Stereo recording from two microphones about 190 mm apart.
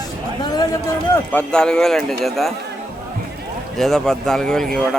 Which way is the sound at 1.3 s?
5° left (ahead or behind).